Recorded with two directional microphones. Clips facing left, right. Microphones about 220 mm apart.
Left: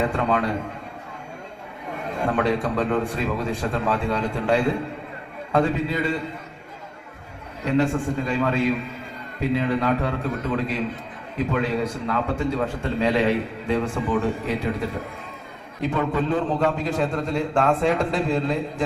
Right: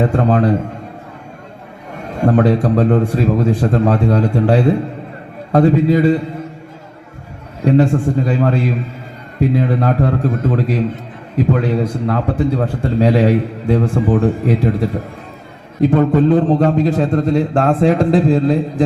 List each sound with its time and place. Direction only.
0.0 s a man's voice: 40° right (ahead or behind)
2.2 s a man's voice: 40° right (ahead or behind)
7.6 s a man's voice: 40° right (ahead or behind)